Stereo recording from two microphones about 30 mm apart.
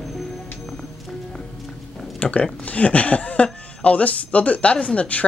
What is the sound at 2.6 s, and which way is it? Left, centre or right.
Speech, left.